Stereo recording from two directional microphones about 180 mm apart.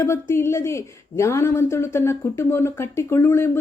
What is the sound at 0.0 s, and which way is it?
A woman's voice, 15° left (ahead or behind).